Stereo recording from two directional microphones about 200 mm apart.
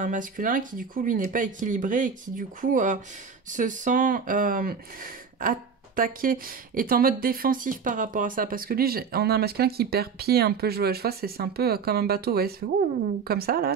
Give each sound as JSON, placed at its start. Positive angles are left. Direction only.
{"t": 0.0, "sound": "speech", "side_deg": -40}